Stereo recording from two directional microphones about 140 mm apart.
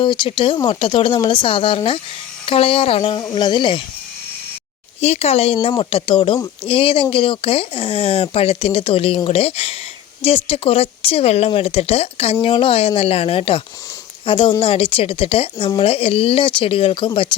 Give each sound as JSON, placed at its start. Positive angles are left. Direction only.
{"t": 0.0, "sound": "speech", "side_deg": 35}
{"t": 3.2, "sound": "speech", "side_deg": 30}
{"t": 4.9, "sound": "speech", "side_deg": 50}